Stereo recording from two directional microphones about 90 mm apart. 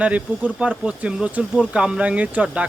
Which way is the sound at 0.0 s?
15° right (ahead or behind).